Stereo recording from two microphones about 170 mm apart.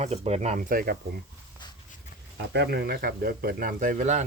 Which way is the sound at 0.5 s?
55° right (ahead or behind).